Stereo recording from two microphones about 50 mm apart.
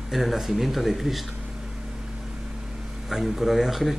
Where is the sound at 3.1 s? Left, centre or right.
Centre.